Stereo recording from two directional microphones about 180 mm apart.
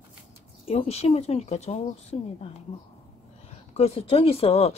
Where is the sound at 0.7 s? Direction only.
35° left (ahead or behind).